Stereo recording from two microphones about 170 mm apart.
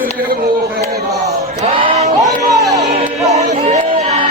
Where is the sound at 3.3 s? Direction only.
40° right (ahead or behind).